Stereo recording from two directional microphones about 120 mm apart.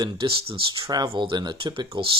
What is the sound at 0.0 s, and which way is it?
Speech, 45° right (ahead or behind).